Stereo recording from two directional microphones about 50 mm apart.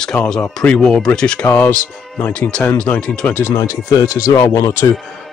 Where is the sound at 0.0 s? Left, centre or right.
Centre.